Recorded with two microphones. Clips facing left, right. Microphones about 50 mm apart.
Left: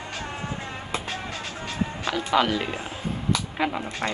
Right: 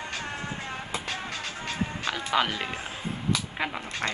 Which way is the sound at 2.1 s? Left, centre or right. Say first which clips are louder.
Left 5 dB; centre.